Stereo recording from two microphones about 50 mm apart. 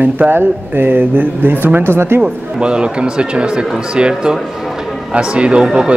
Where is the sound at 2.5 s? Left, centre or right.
Centre.